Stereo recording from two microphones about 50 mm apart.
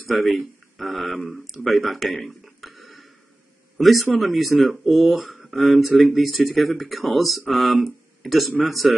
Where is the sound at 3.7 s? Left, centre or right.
Centre.